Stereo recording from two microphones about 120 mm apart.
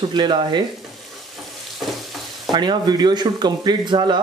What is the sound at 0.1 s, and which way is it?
Speech, 40° right (ahead or behind).